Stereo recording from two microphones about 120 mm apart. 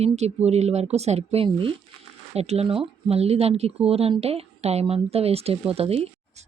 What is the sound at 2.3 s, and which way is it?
Speech, 60° right (ahead or behind).